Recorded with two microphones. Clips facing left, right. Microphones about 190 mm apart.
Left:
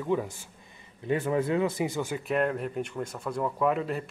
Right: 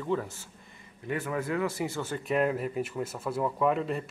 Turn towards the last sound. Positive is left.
turn(degrees=0)  # may be behind; listen again after turning